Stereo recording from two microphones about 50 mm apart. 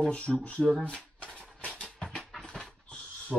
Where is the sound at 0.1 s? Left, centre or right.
Left.